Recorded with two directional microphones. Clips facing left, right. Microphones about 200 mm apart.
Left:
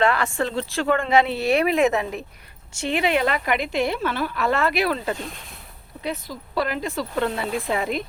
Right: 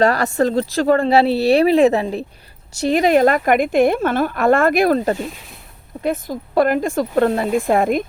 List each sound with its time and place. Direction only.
0.0 s a woman's voice: 40° right (ahead or behind)